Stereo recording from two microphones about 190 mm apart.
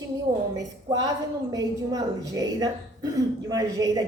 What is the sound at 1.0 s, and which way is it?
A woman's voice, 20° right (ahead or behind).